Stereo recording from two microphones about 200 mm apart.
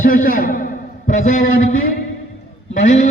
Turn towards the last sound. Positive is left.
turn(degrees=40)  # may be behind; listen again after turning